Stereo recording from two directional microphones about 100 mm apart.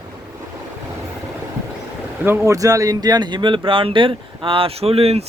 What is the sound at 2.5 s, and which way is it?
Speech, 35° right (ahead or behind).